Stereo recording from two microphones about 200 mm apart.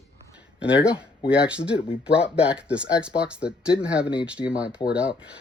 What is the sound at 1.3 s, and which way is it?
Speech, 5° right (ahead or behind).